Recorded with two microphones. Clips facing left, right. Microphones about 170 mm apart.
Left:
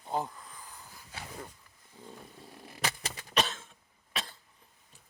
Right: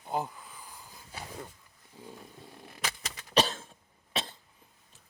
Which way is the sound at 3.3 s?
35° right (ahead or behind).